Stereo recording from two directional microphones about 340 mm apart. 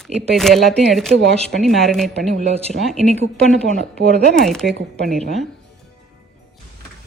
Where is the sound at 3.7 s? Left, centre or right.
Right.